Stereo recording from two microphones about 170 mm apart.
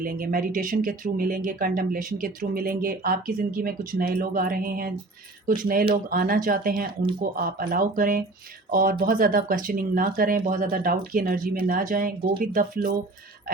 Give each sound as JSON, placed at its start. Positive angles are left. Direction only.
{"t": 0.0, "sound": "speech", "side_deg": -60}